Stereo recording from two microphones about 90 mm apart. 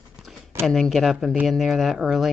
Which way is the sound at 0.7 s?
5° left (ahead or behind).